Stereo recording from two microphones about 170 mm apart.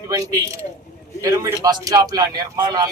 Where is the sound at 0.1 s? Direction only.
20° right (ahead or behind).